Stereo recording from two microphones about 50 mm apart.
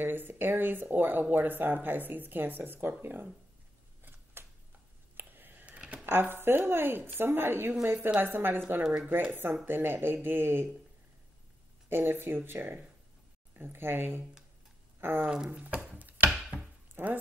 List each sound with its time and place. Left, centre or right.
0.0 s speech: right
4.0 s a sound: right
6.0 s speech: right
8.8 s speech: centre
9.3 s speech: right
11.9 s speech: right
15.3 s speech: centre
15.9 s chopping: right
16.9 s a sound: right